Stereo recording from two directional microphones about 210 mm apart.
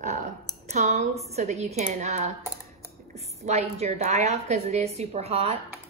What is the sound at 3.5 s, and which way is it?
A woman's voice, 30° right (ahead or behind).